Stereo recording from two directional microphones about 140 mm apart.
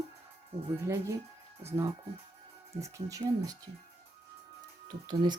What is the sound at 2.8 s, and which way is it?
Speech, 25° right (ahead or behind).